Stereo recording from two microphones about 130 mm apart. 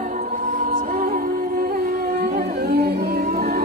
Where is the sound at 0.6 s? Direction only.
90° right.